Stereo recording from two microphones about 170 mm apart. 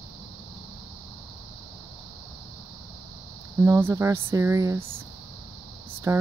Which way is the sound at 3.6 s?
15° right (ahead or behind).